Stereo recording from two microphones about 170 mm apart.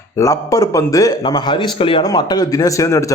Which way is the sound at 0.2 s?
20° left (ahead or behind).